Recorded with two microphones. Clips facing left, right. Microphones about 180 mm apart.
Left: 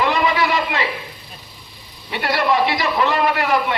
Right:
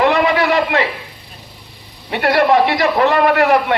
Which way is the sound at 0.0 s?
60° right (ahead or behind).